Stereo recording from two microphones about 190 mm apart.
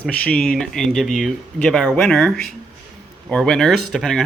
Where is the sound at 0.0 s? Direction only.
5° left (ahead or behind).